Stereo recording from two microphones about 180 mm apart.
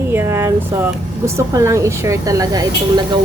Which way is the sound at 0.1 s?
10° right (ahead or behind).